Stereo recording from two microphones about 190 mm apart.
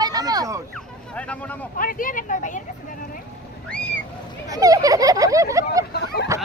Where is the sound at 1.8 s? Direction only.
45° left (ahead or behind).